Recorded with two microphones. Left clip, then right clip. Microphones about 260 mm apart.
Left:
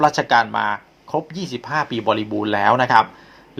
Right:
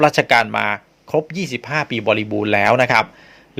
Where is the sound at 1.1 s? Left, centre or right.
Right.